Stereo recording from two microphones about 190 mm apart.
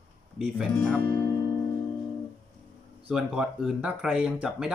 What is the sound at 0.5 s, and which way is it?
Speech, 5° left (ahead or behind).